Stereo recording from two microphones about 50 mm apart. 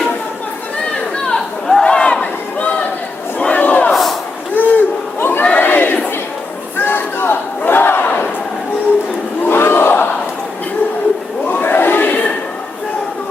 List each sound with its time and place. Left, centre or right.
1.2 s chatter: centre
1.8 s a sound: centre
3.3 s battle cry: left
4.5 s a sound: left
5.2 s crowd: left
6.7 s battle cry: left
9.4 s crowd: left
11.4 s crowd: left